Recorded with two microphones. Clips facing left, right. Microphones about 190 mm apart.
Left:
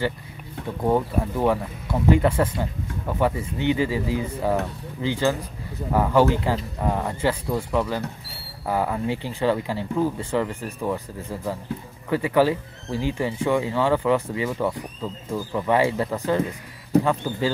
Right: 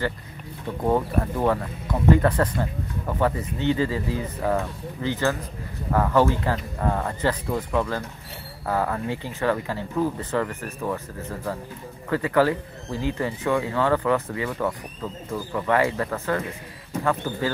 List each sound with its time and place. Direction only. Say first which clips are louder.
0.8 s speech: left 1 dB; 10° left (ahead or behind)